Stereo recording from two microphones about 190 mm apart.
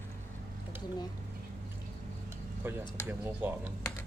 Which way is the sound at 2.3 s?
10° right (ahead or behind).